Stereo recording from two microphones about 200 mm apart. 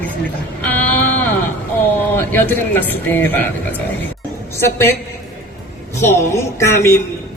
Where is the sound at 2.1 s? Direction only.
10° left (ahead or behind).